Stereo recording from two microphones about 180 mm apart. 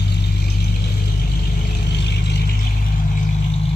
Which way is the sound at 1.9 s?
70° left (ahead or behind).